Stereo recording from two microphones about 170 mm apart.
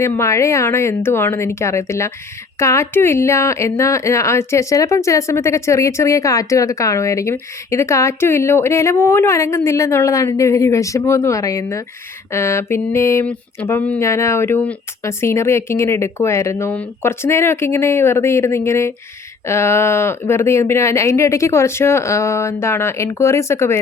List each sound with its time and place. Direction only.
0.0 s speech: 15° left (ahead or behind)